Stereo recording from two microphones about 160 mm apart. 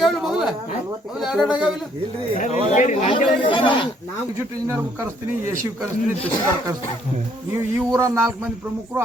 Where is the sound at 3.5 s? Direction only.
30° left (ahead or behind).